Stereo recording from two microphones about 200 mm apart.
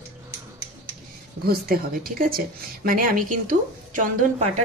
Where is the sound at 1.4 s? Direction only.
50° right (ahead or behind).